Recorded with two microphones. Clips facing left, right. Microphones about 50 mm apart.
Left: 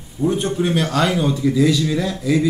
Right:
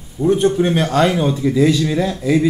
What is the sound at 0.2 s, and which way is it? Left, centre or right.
Speech, centre.